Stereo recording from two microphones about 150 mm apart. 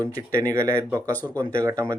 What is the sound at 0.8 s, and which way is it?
Speech, 15° right (ahead or behind).